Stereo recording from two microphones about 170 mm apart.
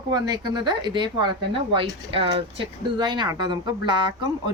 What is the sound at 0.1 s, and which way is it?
Speech, 25° right (ahead or behind).